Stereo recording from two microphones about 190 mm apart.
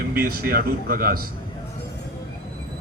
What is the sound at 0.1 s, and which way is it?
A man's voice, 50° right (ahead or behind).